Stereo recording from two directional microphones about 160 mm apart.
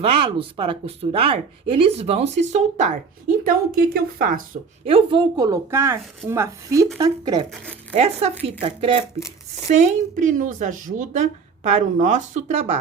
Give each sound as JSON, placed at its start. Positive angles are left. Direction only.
{"t": 0.0, "sound": "speech", "side_deg": -35}
{"t": 3.4, "sound": "a woman's voice", "side_deg": -65}
{"t": 4.9, "sound": "speech", "side_deg": -35}
{"t": 7.6, "sound": "speech", "side_deg": 5}
{"t": 7.9, "sound": "speech", "side_deg": -40}
{"t": 9.6, "sound": "a woman's voice", "side_deg": -50}